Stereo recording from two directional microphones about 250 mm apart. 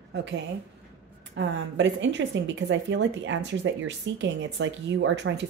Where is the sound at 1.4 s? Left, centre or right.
Right.